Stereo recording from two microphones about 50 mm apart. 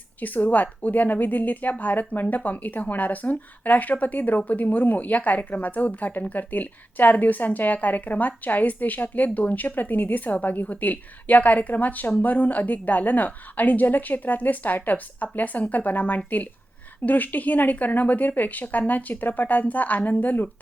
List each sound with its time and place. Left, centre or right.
0.2 s speech: left